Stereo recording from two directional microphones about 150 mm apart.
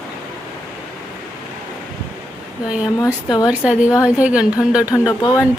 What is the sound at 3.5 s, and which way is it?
Speech, 10° right (ahead or behind).